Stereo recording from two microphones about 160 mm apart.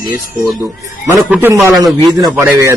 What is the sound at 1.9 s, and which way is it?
Speech, 25° right (ahead or behind).